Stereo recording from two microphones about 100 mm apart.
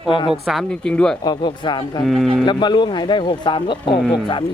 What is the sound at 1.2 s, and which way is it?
Speech, 45° left (ahead or behind).